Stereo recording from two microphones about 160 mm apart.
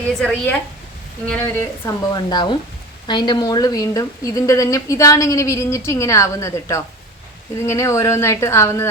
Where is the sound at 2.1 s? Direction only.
30° left (ahead or behind).